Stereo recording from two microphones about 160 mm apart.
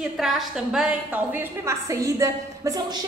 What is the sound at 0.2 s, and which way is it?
A woman's voice, centre (ahead or behind).